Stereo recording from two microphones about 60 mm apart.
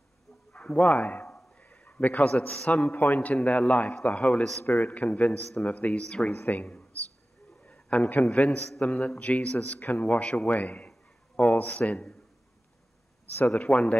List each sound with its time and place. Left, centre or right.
0.5 s a man's voice: centre
6.3 s speech: left
7.6 s a sound: left
8.8 s speech: left
9.8 s a man's voice: left
13.5 s speech: centre